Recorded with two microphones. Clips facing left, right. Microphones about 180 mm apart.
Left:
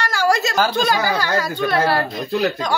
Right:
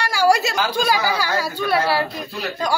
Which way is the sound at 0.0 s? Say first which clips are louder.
Right 1 dB; 10° right (ahead or behind).